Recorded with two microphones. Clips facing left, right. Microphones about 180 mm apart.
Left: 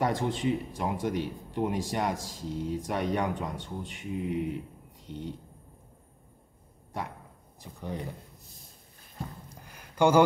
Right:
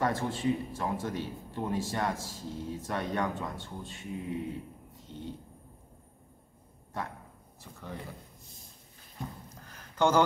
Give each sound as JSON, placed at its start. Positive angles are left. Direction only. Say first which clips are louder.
{"t": 0.0, "sound": "speech", "louder": "left 2 dB", "side_deg": 15}
{"t": 7.6, "sound": "speech", "louder": "left 6 dB", "side_deg": 15}
{"t": 9.5, "sound": "a sound", "louder": "left 1 dB", "side_deg": 10}